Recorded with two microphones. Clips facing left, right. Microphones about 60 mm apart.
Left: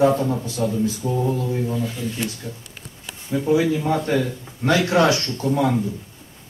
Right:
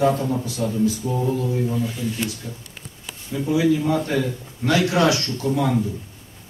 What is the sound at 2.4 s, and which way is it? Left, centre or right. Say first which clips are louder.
Mantra: left 1 dB; centre.